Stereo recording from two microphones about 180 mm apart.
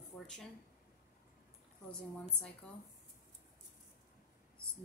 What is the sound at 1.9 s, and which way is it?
Speech, 5° left (ahead or behind).